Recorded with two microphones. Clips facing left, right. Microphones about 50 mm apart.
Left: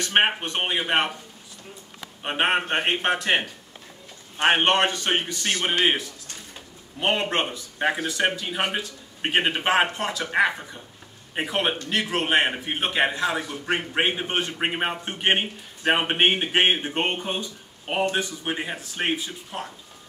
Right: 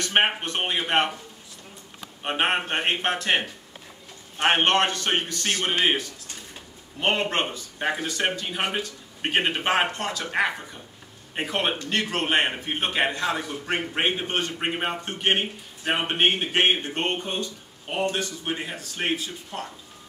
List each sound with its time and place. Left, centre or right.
0.0 s speech: centre
2.2 s a man's voice: centre